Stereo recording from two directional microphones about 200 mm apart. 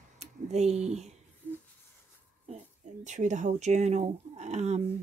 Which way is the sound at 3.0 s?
35° right (ahead or behind).